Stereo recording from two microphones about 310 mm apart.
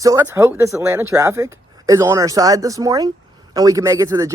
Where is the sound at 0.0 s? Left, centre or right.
Centre.